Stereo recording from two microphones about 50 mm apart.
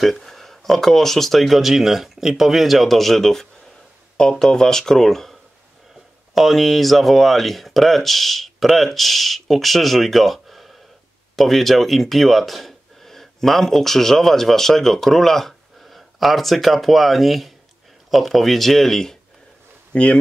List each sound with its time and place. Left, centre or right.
0.0 s speech: centre
19.9 s speech: left